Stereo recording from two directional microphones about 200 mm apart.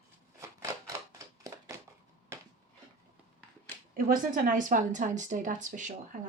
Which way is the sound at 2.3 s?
15° right (ahead or behind).